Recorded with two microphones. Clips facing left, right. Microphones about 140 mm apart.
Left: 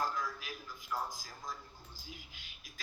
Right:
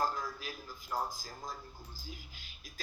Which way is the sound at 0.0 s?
35° right (ahead or behind).